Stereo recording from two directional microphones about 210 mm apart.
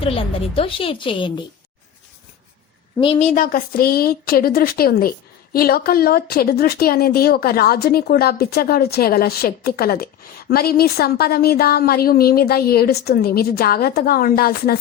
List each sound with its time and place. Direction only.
0.0 s a woman's voice: 25° left (ahead or behind)
3.0 s a woman's voice: 25° left (ahead or behind)
3.3 s a woman's voice: 40° left (ahead or behind)